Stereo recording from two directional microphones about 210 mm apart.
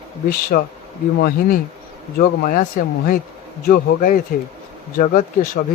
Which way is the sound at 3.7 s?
40° left (ahead or behind).